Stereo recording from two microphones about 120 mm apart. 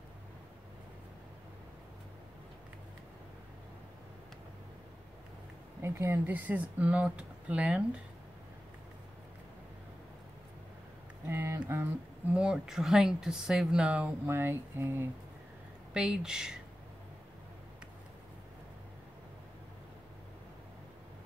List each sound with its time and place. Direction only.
5.8 s speech: 20° right (ahead or behind)
11.2 s a sound: 20° right (ahead or behind)
11.7 s speech: 20° right (ahead or behind)
12.4 s speech: 5° right (ahead or behind)
15.9 s speech: 5° right (ahead or behind)